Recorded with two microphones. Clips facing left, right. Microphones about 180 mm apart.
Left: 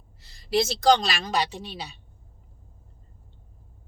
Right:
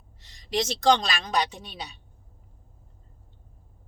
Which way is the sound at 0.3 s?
5° left (ahead or behind).